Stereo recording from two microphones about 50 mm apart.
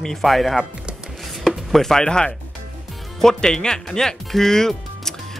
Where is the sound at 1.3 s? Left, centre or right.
Centre.